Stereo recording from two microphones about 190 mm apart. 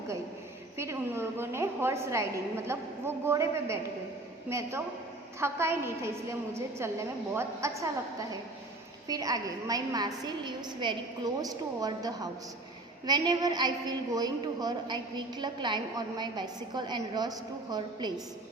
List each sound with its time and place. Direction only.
0.8 s a woman's voice: 15° right (ahead or behind)
9.0 s a woman's voice: 20° right (ahead or behind)